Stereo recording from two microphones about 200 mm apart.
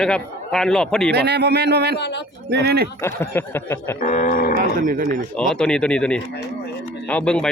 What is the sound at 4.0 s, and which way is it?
Speech, 45° left (ahead or behind).